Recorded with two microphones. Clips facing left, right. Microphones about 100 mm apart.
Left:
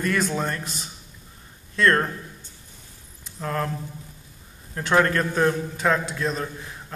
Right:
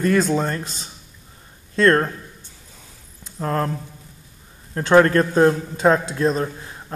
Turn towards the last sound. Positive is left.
turn(degrees=-35)  # may be behind; listen again after turning